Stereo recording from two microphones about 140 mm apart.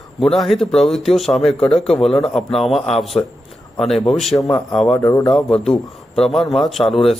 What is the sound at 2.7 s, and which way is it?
Speech, 45° left (ahead or behind).